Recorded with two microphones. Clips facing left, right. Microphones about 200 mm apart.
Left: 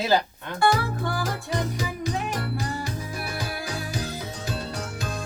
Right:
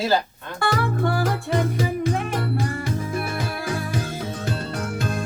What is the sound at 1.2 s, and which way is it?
Music, 55° right (ahead or behind).